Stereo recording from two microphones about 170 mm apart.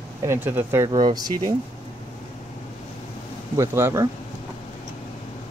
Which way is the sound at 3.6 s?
15° right (ahead or behind).